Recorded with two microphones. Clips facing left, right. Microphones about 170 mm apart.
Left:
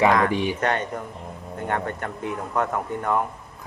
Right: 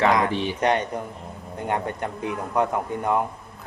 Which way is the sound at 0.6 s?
15° right (ahead or behind).